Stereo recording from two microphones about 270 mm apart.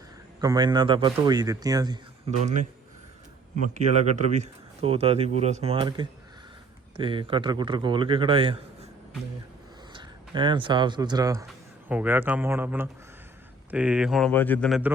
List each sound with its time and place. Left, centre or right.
0.4 s speech: centre
3.8 s speech: right
9.9 s speech: centre